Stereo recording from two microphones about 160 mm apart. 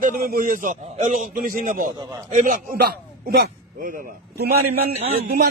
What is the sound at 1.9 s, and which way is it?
Speech, 25° right (ahead or behind).